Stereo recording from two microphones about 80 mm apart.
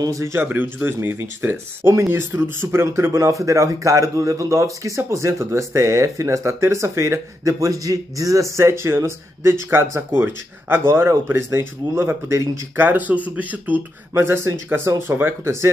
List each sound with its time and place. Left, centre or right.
0.0 s speech: right
12.7 s speech: right
14.1 s speech: right